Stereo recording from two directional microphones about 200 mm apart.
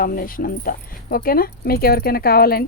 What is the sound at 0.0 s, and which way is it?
Speech, 45° left (ahead or behind).